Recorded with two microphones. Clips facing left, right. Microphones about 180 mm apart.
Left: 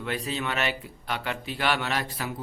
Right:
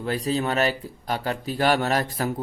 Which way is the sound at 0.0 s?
40° right (ahead or behind).